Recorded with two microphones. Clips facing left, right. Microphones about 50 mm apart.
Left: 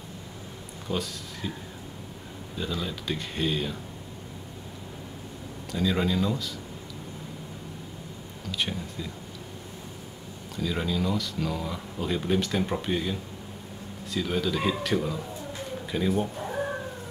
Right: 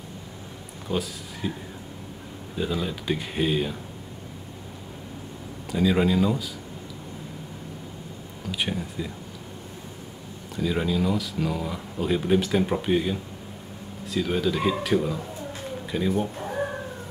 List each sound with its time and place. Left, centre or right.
0.9 s speech: centre
1.4 s speech: centre
5.7 s speech: centre
8.5 s speech: centre
10.5 s speech: centre
15.9 s a sound: centre